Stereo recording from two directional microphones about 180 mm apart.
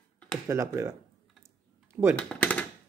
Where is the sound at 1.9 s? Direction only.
10° right (ahead or behind).